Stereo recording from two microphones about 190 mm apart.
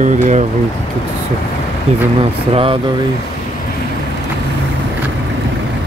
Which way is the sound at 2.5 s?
30° right (ahead or behind).